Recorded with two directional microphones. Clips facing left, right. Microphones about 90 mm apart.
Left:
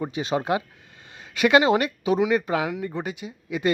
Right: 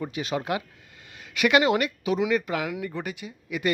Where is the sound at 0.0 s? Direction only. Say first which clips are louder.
Left 3 dB; 25° left (ahead or behind).